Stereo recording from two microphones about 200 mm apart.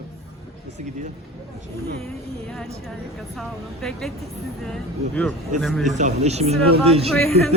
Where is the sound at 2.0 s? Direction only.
Centre (ahead or behind).